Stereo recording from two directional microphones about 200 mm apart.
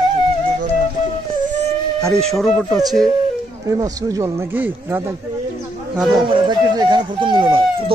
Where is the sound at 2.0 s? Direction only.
Centre (ahead or behind).